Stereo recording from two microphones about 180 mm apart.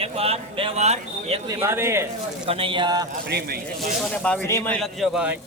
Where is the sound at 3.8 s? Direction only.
5° left (ahead or behind).